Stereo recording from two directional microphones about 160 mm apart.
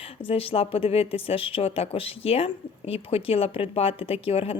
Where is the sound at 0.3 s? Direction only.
35° left (ahead or behind).